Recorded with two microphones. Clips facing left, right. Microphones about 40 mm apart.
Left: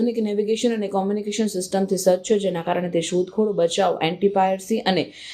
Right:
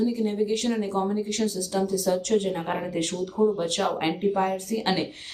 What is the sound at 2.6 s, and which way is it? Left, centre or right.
Speech, left.